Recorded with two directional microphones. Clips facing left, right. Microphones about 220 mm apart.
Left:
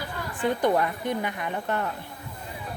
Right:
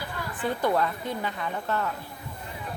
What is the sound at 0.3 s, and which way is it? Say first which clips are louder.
A woman's voice: left 2 dB; 15° left (ahead or behind).